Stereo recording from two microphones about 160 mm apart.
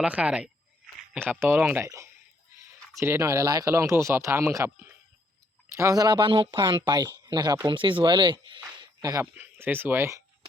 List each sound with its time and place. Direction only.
0.0 s speech: 5° right (ahead or behind); by 9.2 s 25° right (ahead or behind)
9.3 s speech: 10° right (ahead or behind)